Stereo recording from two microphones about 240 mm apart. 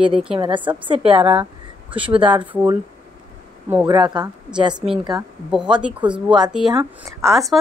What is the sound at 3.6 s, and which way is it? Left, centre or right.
A woman's voice, centre.